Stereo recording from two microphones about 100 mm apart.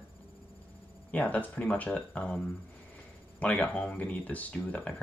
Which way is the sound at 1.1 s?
15° left (ahead or behind).